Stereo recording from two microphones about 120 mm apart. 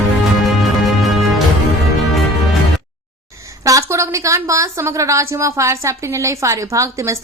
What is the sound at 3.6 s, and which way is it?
A woman's voice, 25° right (ahead or behind).